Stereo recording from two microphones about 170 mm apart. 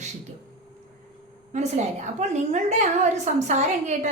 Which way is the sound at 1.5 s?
45° right (ahead or behind).